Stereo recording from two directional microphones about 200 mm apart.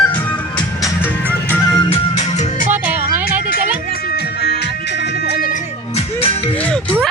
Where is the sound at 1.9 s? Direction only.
35° left (ahead or behind).